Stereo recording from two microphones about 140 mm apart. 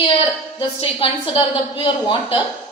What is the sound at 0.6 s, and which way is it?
A woman's voice, 35° left (ahead or behind).